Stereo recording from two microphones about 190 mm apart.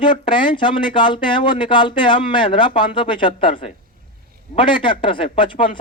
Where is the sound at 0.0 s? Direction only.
25° left (ahead or behind).